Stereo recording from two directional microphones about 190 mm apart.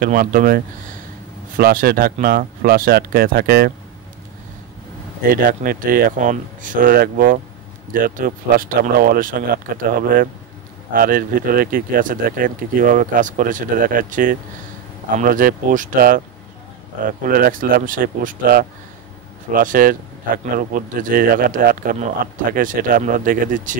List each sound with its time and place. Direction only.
0.0 s speech: 50° right (ahead or behind)
1.6 s speech: 50° right (ahead or behind)
5.3 s speech: 50° right (ahead or behind)